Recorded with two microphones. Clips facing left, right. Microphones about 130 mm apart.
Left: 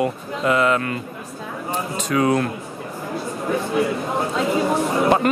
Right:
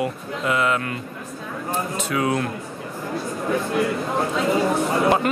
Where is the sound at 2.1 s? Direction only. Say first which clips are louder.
Left 5 dB; 35° left (ahead or behind).